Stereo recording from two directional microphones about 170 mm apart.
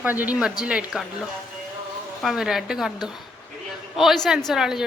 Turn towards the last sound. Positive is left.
turn(degrees=-5)  # may be behind; listen again after turning